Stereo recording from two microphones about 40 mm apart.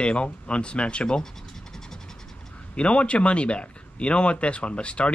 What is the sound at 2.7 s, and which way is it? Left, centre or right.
Speech, left.